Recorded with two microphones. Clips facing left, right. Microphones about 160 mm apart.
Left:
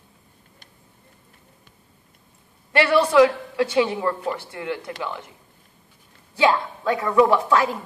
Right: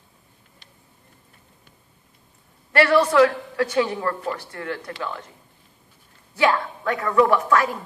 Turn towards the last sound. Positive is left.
turn(degrees=20)  # may be behind; listen again after turning